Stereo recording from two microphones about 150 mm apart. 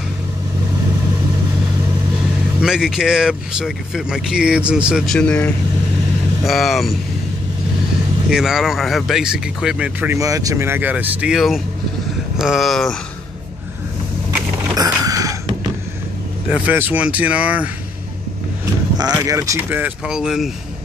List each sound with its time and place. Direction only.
2.6 s speech: 5° right (ahead or behind)
8.3 s speech: 5° right (ahead or behind)
10.1 s speech: 20° right (ahead or behind); by 12.9 s centre (ahead or behind)
14.9 s a sound: 25° right (ahead or behind)
16.4 s speech: 10° right (ahead or behind)
19.2 s speech: 20° right (ahead or behind); by 20.5 s 5° right (ahead or behind)